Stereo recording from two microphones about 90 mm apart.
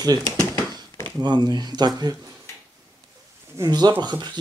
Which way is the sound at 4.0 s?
50° right (ahead or behind).